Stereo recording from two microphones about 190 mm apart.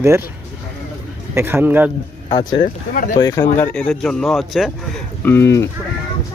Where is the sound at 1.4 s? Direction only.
10° right (ahead or behind).